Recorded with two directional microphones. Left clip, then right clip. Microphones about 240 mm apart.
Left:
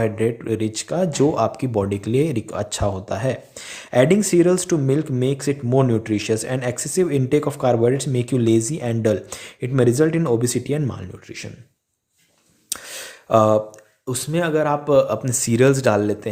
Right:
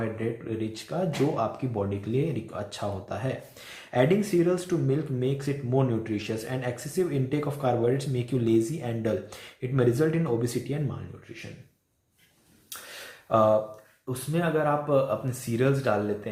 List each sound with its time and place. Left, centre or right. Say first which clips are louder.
0.0 s speech: left 10 dB; left
12.6 s speech: left 9 dB; left